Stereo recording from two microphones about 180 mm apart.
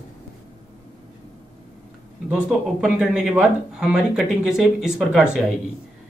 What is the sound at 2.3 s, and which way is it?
Speech, 5° right (ahead or behind).